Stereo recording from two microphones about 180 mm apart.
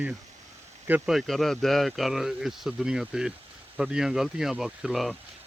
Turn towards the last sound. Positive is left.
turn(degrees=0)  # may be behind; listen again after turning